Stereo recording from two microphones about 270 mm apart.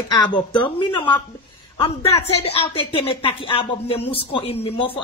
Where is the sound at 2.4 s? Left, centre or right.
Left.